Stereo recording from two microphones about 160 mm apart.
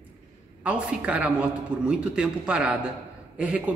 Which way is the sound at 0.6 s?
5° right (ahead or behind).